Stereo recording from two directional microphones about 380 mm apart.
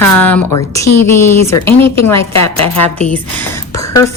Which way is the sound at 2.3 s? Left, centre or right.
Left.